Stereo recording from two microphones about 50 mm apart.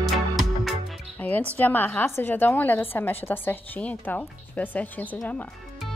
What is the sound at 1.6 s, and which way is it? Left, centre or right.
A woman's voice, left.